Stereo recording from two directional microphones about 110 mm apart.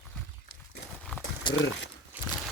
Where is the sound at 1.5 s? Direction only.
45° left (ahead or behind).